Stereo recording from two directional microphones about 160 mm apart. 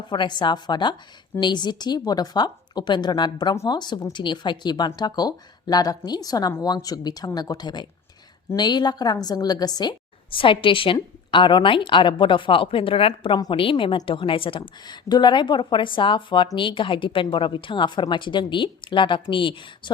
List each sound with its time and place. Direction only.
0.0 s a woman's voice: 30° left (ahead or behind)